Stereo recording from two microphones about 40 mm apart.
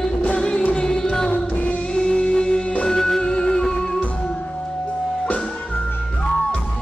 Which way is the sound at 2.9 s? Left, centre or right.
Centre.